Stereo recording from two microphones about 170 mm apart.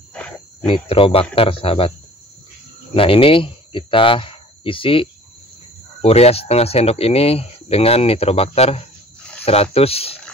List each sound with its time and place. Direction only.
0.1 s wild animals: 5° left (ahead or behind)
0.7 s speech: 30° left (ahead or behind)
2.9 s speech: 30° left (ahead or behind)
6.0 s speech: 35° left (ahead or behind)